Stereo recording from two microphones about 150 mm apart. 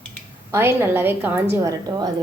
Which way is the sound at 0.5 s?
15° right (ahead or behind).